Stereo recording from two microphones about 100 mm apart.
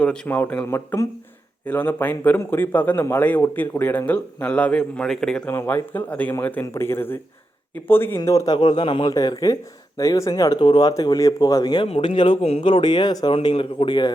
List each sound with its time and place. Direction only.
0.0 s a man's voice: 15° left (ahead or behind)
5.5 s a man's voice: 25° left (ahead or behind)
8.2 s speech: 35° left (ahead or behind)
8.5 s speech: 50° left (ahead or behind)
9.0 s speech: 40° left (ahead or behind)
11.9 s speech: 65° left (ahead or behind)
12.4 s speech: 75° left (ahead or behind); by 14.1 s 55° left (ahead or behind)